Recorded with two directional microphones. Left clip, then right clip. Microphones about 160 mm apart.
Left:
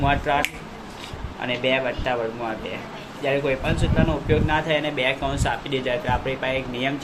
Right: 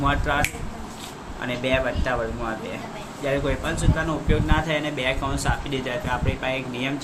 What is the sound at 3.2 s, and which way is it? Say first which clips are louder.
Speech: left 2 dB; 20° right (ahead or behind).